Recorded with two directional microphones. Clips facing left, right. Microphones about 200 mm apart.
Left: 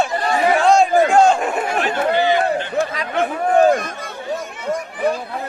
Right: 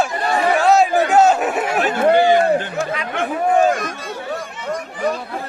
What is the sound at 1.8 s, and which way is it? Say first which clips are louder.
Chatter: right 5 dB; 45° right (ahead or behind).